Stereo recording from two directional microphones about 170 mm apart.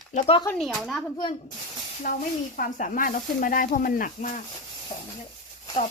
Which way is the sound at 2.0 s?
50° left (ahead or behind).